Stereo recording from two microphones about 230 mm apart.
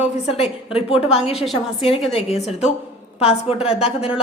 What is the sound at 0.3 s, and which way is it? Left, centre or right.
A woman's voice, left.